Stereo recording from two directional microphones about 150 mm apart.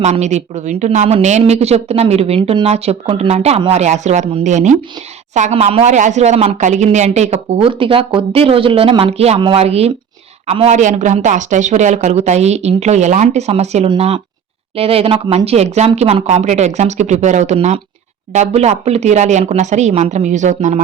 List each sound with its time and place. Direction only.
0.0 s speech: 50° right (ahead or behind)